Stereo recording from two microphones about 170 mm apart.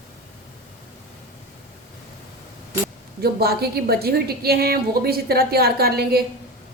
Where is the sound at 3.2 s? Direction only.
65° right (ahead or behind).